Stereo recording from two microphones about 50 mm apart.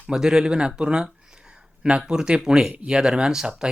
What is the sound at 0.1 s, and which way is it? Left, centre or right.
Speech, centre.